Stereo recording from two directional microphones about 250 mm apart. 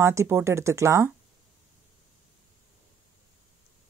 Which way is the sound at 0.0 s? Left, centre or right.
Centre.